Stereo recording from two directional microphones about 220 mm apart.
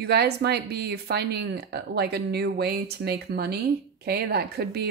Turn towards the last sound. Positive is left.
turn(degrees=-45)  # may be behind; listen again after turning